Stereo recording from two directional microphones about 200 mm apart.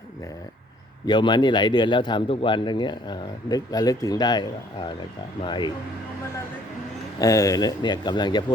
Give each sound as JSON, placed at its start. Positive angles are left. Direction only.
{"t": 1.0, "sound": "speech", "side_deg": 20}
{"t": 7.2, "sound": "speech", "side_deg": 15}